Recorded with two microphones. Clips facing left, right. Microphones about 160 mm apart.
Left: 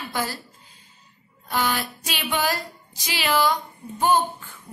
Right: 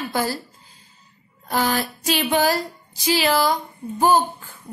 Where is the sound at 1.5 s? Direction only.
40° right (ahead or behind).